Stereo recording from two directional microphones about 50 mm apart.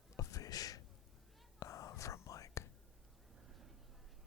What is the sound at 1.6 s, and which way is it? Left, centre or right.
Whispering, left.